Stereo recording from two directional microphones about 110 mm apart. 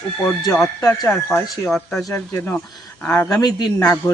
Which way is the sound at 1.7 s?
Centre (ahead or behind).